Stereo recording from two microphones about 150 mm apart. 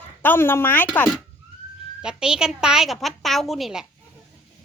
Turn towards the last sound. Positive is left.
turn(degrees=0)  # may be behind; listen again after turning